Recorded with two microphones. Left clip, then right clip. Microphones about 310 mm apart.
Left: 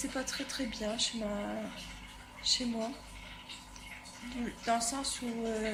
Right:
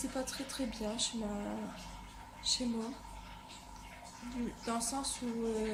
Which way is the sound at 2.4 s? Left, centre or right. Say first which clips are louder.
Left 4 dB; centre.